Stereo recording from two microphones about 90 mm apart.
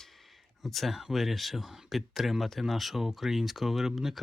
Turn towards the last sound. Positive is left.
turn(degrees=-5)  # may be behind; listen again after turning